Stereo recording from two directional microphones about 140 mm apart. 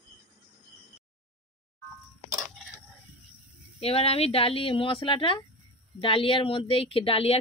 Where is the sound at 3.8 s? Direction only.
45° left (ahead or behind).